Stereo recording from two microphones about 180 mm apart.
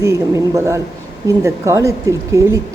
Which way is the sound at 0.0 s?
15° right (ahead or behind).